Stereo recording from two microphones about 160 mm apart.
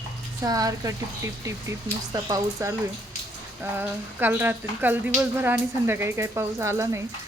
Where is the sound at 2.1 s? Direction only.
20° right (ahead or behind).